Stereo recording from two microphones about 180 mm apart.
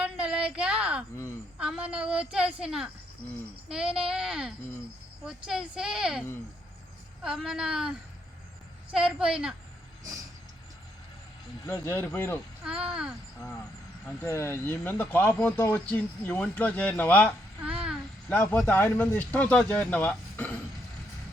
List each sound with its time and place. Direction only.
0.0 s a sound: 5° right (ahead or behind)
1.1 s speech: 15° left (ahead or behind)
1.5 s a woman's voice: 5° right (ahead or behind)
4.1 s a woman's voice: 5° right (ahead or behind)
7.3 s a woman's voice: 5° right (ahead or behind)
11.6 s speech: 10° left (ahead or behind)
12.6 s a woman's voice: 5° right (ahead or behind)
14.2 s speech: 15° left (ahead or behind)
17.6 s a sound: 5° right (ahead or behind)
18.3 s speech: 10° left (ahead or behind)